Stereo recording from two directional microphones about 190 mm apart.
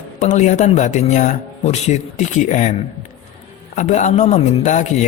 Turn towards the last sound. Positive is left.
turn(degrees=40)  # may be behind; listen again after turning